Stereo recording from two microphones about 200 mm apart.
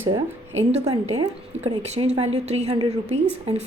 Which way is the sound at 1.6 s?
30° right (ahead or behind).